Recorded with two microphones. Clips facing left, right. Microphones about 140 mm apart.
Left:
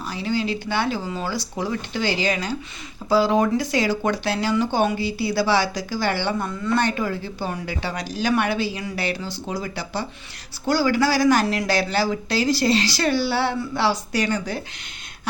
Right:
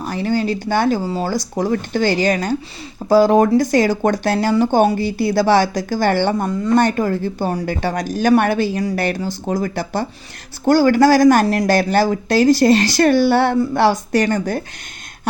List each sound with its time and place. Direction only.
0.0 s speech: 50° right (ahead or behind)